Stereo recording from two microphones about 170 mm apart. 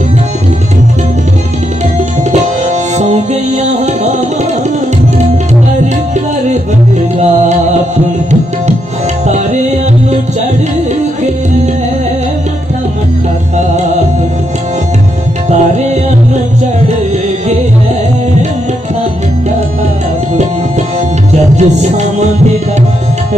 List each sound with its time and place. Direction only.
2.4 s music: 40° right (ahead or behind)
7.2 s music: 40° right (ahead or behind)
13.6 s music: 45° right (ahead or behind)
21.3 s music: 40° right (ahead or behind)